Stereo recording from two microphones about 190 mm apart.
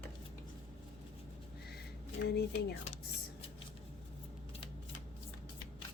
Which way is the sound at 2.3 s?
60° left (ahead or behind).